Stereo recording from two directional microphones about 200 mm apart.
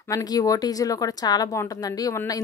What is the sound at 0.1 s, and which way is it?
A woman's voice, 20° left (ahead or behind).